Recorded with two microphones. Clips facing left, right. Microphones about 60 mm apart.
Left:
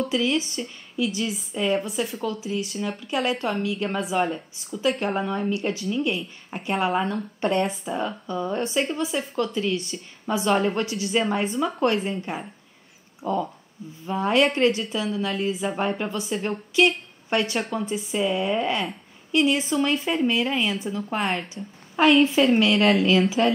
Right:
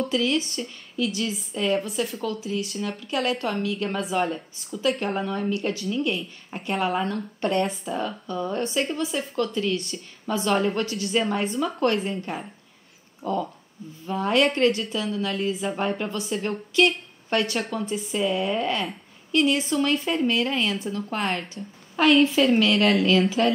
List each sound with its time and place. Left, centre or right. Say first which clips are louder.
0.0 s a woman's voice: even; centre
7.4 s a woman's voice: left 1 dB; centre
23.4 s a woman's voice: left 1 dB; centre